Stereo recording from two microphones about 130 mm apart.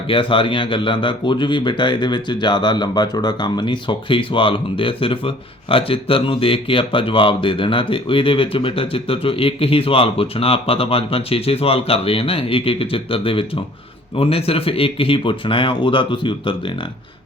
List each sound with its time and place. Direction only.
0.1 s speech: 40° left (ahead or behind)